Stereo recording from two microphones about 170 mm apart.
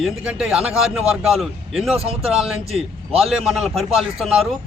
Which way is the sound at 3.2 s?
Centre (ahead or behind).